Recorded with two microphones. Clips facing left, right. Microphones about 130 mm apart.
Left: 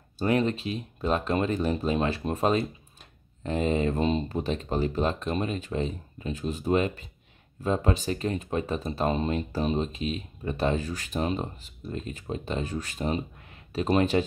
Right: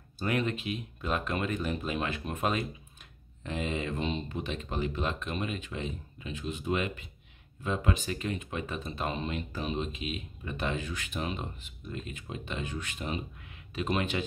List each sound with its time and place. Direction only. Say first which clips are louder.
0.2 s speech: left 6 dB; 35° left (ahead or behind)